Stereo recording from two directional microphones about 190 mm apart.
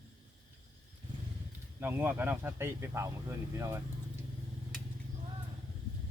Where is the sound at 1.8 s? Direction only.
10° right (ahead or behind).